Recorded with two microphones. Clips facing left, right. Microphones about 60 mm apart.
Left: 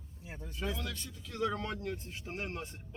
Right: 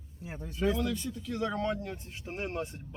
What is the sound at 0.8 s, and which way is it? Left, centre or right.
Speech, centre.